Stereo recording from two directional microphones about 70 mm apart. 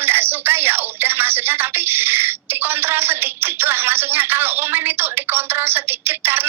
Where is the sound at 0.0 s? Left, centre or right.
Right.